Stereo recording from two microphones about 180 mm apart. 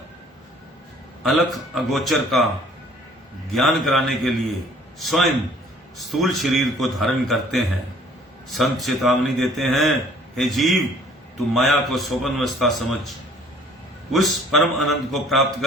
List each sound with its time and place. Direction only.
1.2 s a man's voice: centre (ahead or behind)
3.5 s a man's voice: centre (ahead or behind)